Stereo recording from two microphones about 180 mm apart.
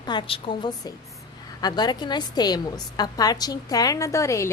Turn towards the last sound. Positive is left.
turn(degrees=15)  # may be behind; listen again after turning